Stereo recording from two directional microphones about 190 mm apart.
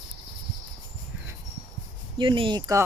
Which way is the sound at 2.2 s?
25° right (ahead or behind).